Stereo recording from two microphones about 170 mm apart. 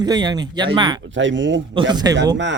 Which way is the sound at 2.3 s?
90° right.